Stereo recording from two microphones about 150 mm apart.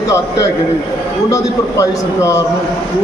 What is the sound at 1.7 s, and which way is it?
Speech, 20° left (ahead or behind).